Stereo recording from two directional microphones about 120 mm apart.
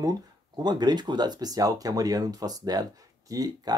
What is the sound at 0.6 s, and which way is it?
Speech, 35° right (ahead or behind).